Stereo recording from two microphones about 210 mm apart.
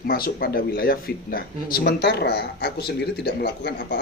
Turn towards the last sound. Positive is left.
turn(degrees=50)  # may be behind; listen again after turning